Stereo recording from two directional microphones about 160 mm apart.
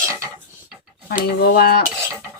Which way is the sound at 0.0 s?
20° right (ahead or behind).